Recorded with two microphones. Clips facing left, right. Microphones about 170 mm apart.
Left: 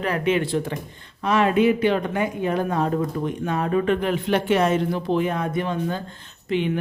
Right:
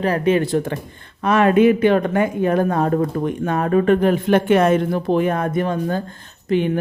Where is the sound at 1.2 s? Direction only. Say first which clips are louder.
Right 5 dB; 55° right (ahead or behind).